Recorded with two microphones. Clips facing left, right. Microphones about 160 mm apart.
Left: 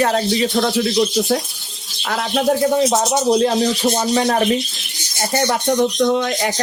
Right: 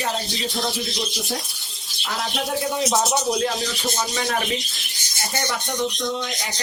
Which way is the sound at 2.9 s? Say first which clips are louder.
Left 6 dB; 35° left (ahead or behind).